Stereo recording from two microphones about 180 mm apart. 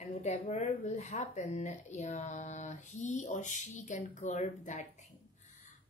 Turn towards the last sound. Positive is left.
turn(degrees=40)  # may be behind; listen again after turning